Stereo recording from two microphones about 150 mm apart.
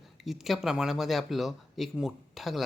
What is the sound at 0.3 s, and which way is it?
Speech, centre (ahead or behind).